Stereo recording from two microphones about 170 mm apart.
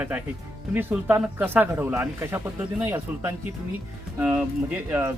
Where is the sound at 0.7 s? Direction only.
10° right (ahead or behind).